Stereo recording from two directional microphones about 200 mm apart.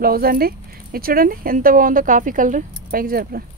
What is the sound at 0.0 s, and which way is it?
Speech, 50° right (ahead or behind).